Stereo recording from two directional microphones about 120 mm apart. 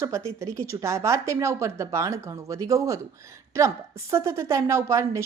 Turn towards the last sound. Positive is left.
turn(degrees=-25)  # may be behind; listen again after turning